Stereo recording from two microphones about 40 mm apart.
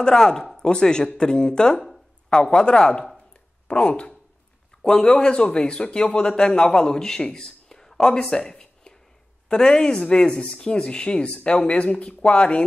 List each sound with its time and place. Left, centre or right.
0.0 s speech: centre
4.8 s speech: centre